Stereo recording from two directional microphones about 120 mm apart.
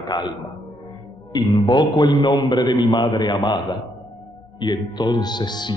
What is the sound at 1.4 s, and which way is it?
A man's voice, 40° left (ahead or behind).